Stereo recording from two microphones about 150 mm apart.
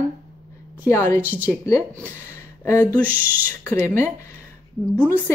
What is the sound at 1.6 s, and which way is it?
Speech, 20° left (ahead or behind).